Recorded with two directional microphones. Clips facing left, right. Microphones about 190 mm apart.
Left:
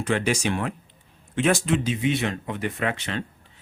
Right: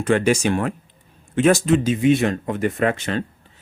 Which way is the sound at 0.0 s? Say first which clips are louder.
Right 6 dB; 50° right (ahead or behind).